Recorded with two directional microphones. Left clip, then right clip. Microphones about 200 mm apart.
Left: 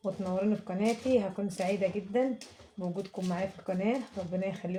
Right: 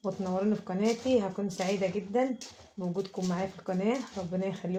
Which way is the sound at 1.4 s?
20° right (ahead or behind).